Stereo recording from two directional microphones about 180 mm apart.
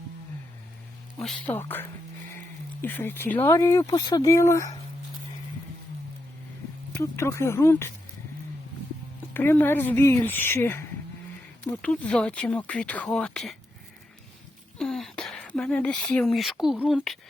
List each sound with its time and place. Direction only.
1.2 s speech: 5° left (ahead or behind)
6.9 s speech: 15° left (ahead or behind)
9.3 s speech: 10° left (ahead or behind)
14.8 s speech: centre (ahead or behind)